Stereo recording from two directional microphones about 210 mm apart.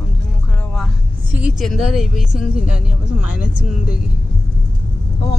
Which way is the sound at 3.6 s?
5° right (ahead or behind).